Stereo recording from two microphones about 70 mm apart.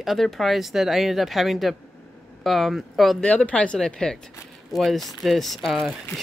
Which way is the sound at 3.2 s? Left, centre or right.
Centre.